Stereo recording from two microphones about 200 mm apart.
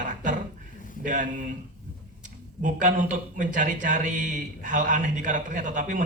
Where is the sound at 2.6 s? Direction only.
40° right (ahead or behind).